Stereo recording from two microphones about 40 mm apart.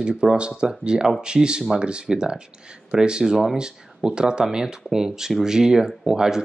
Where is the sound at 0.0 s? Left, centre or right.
Right.